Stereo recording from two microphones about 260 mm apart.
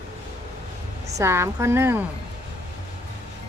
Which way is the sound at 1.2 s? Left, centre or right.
Centre.